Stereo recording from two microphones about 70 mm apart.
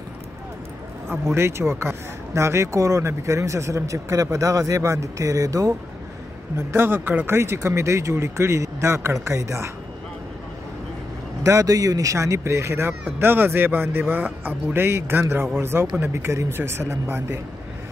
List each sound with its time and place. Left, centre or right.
1.1 s speech: right
6.7 s speech: right
11.4 s speech: right